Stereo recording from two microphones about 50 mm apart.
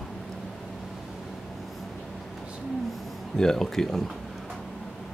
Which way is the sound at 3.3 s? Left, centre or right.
Centre.